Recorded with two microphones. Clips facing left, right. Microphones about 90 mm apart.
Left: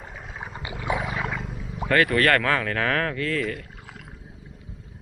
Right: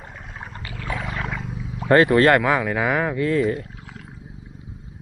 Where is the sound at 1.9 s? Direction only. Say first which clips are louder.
Right 6 dB; 25° right (ahead or behind).